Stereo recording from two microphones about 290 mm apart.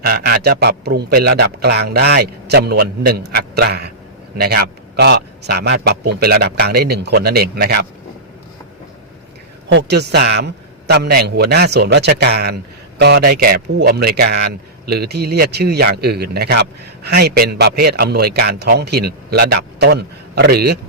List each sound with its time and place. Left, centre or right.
0.0 s a man's voice: right
9.6 s a man's voice: right